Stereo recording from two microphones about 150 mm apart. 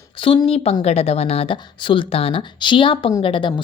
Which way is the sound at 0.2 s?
35° left (ahead or behind).